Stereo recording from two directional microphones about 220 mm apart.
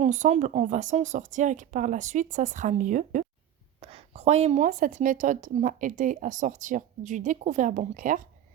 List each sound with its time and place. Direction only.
0.0 s a woman's voice: 30° right (ahead or behind)